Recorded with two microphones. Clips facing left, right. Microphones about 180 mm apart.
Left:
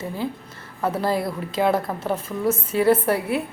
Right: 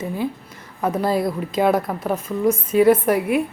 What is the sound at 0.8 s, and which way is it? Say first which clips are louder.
A woman's voice: right 3 dB; 15° right (ahead or behind).